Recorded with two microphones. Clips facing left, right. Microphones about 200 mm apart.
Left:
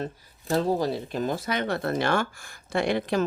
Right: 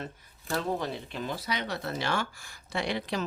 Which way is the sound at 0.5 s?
35° left (ahead or behind).